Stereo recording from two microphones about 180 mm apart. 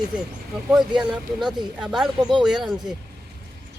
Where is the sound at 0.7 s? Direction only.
5° right (ahead or behind).